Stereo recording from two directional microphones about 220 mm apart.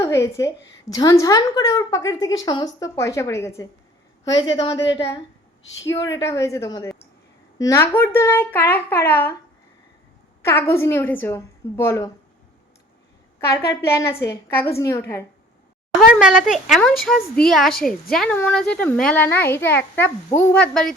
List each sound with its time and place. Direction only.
0.0 s a woman's voice: 15° left (ahead or behind)
5.9 s speech: 15° left (ahead or behind)
10.4 s speech: 10° left (ahead or behind)
13.6 s speech: 10° left (ahead or behind)
16.1 s a woman's voice: centre (ahead or behind)